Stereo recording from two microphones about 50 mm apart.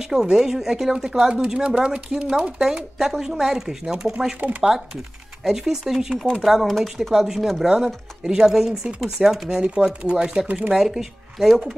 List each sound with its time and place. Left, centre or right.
0.0 s speech: centre
4.4 s speech: right
5.4 s speech: centre